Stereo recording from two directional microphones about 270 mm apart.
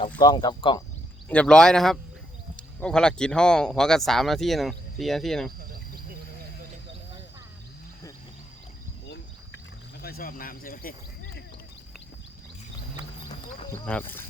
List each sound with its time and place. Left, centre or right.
0.2 s speech: centre
1.3 s speech: centre
9.0 s a sound: left
10.0 s speech: left
13.8 s speech: centre